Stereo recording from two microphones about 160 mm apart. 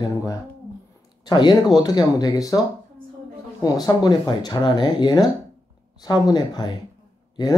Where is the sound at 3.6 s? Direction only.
25° left (ahead or behind).